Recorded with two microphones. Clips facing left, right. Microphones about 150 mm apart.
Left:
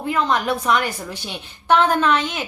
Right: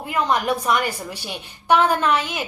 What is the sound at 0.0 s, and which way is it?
A woman's voice, 10° right (ahead or behind).